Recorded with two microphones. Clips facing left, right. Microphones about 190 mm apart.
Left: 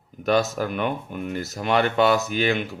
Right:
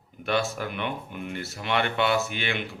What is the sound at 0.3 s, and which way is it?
Speech, 40° left (ahead or behind).